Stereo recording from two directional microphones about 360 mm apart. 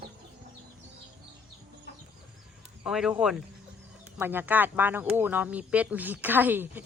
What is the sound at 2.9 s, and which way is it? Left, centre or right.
A woman's voice, centre.